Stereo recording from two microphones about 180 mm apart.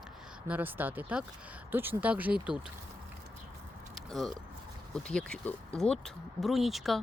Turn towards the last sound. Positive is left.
turn(degrees=0)  # may be behind; listen again after turning